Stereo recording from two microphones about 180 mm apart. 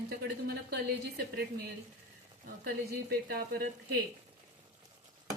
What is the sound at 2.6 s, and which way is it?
Speech, 60° right (ahead or behind).